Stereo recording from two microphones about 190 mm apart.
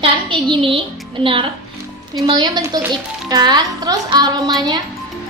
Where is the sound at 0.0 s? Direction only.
25° right (ahead or behind).